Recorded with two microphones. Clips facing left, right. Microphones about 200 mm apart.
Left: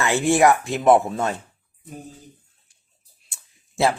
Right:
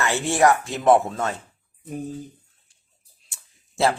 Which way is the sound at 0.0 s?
15° left (ahead or behind).